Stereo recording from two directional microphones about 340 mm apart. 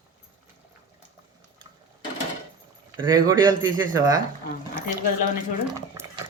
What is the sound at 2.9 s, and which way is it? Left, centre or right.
Speech, centre.